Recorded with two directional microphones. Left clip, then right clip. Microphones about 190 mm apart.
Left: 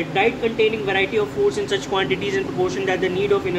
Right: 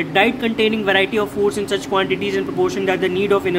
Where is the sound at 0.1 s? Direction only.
35° right (ahead or behind).